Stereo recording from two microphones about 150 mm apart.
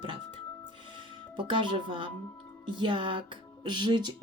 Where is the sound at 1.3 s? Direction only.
35° right (ahead or behind).